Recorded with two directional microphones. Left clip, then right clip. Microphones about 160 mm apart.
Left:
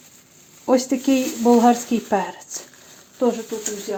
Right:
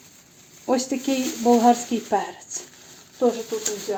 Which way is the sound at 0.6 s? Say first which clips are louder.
Left 5 dB; 45° left (ahead or behind).